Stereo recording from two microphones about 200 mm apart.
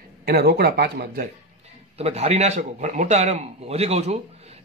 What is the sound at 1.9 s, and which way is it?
A man's voice, 30° right (ahead or behind).